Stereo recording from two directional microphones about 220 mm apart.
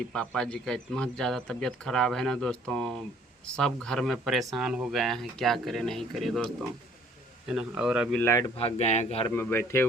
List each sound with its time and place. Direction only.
0.1 s speech: 5° left (ahead or behind)
8.2 s a man's voice: 15° left (ahead or behind)
8.5 s speech: 30° left (ahead or behind)
9.2 s a man's voice: 10° left (ahead or behind)